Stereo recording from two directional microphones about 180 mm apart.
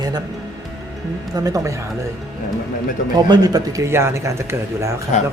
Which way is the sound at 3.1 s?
20° right (ahead or behind).